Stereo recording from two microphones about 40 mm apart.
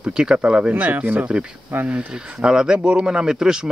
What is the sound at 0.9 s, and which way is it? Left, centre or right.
Speech, right.